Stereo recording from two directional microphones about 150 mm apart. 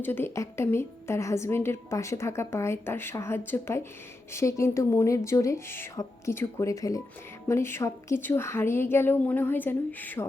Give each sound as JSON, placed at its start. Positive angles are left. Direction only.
{"t": 0.0, "sound": "a woman's voice", "side_deg": 15}